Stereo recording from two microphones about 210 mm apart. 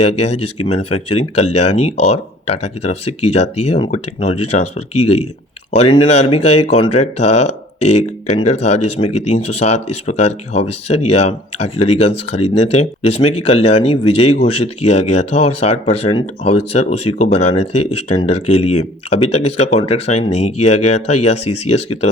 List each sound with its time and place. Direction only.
0.2 s speech: 30° left (ahead or behind)
5.7 s speech: 30° left (ahead or behind)